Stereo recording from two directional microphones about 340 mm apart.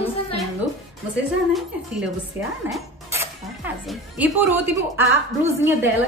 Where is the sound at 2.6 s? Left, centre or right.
Centre.